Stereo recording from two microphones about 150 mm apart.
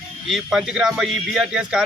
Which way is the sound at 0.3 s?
Centre (ahead or behind).